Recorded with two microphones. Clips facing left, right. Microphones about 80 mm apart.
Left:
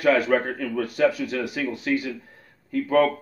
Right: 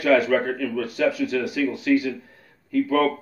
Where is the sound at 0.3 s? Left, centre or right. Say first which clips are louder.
Right 1 dB; left.